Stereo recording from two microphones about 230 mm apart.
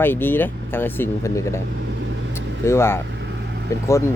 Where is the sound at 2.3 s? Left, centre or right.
Centre.